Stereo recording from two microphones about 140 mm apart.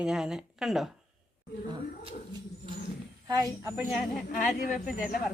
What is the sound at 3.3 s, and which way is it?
Speech, 25° right (ahead or behind).